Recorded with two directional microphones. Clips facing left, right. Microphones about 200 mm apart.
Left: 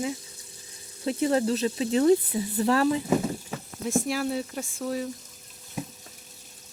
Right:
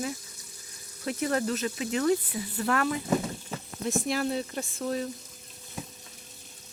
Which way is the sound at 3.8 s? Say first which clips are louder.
Left 2 dB; 5° left (ahead or behind).